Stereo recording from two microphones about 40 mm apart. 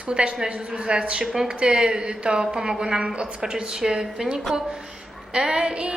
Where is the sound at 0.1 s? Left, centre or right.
Right.